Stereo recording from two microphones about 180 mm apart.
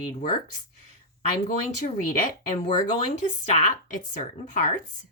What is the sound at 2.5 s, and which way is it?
Speech, 40° left (ahead or behind).